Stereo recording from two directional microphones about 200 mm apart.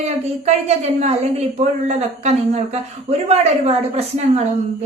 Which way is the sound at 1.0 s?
35° right (ahead or behind).